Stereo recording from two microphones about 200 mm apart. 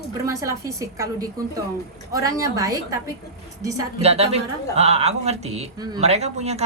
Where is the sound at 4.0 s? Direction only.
30° right (ahead or behind).